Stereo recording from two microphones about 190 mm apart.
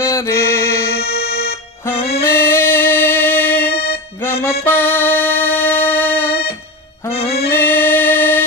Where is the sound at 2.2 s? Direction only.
15° left (ahead or behind).